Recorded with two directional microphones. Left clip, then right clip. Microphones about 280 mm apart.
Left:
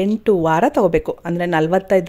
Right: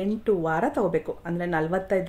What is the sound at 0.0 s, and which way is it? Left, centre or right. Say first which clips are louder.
Speech: left 8 dB; left.